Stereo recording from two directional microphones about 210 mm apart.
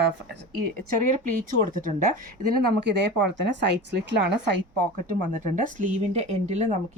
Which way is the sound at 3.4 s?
55° right (ahead or behind).